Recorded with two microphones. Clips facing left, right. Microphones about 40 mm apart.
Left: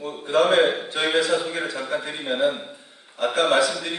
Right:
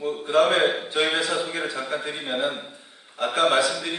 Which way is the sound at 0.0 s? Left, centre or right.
Centre.